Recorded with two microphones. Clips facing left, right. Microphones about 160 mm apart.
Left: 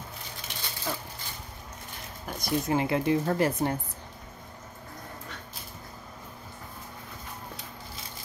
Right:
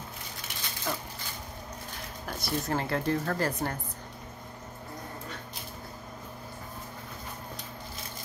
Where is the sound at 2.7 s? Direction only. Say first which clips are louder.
Left 4 dB; 10° left (ahead or behind).